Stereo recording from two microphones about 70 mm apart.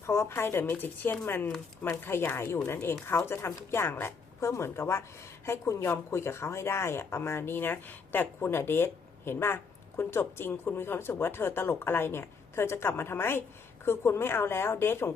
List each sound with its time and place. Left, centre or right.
0.0 s speech: left